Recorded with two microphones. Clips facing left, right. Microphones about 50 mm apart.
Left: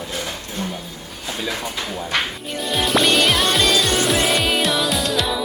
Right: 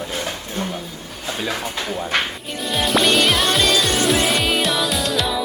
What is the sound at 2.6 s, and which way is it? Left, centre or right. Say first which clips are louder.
Music: even; centre.